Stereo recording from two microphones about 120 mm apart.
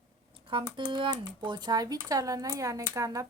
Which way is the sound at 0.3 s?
45° right (ahead or behind).